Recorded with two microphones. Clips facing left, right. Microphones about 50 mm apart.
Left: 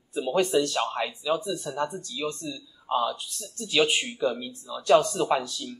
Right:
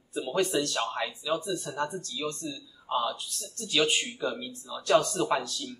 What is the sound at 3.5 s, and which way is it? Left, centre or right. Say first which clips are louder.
Speech: left 3 dB; centre.